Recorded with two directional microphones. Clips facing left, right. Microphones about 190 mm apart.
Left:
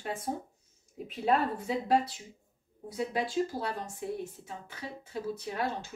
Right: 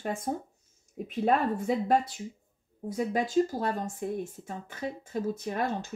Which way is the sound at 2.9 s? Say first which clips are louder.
Right 4 dB; 45° right (ahead or behind).